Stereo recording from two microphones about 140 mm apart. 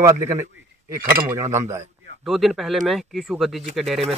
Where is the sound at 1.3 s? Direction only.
20° right (ahead or behind).